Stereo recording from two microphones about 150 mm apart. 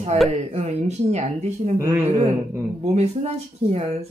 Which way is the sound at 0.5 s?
50° right (ahead or behind).